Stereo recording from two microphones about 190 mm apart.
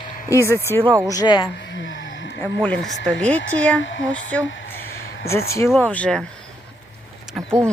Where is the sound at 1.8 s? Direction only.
85° left.